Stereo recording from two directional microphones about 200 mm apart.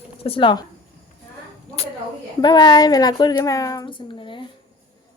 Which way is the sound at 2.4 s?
20° left (ahead or behind).